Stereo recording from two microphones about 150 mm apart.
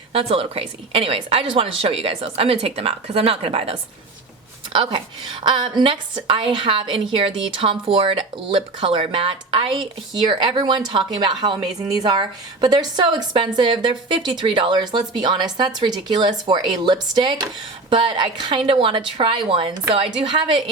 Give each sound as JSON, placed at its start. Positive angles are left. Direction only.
{"t": 0.1, "sound": "a woman's voice", "side_deg": -40}